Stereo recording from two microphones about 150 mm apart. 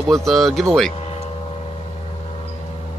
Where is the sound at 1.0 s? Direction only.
40° left (ahead or behind).